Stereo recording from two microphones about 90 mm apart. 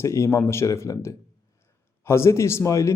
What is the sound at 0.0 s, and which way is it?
A man's voice, 35° left (ahead or behind).